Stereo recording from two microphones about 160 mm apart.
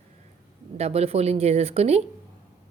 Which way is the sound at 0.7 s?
40° right (ahead or behind).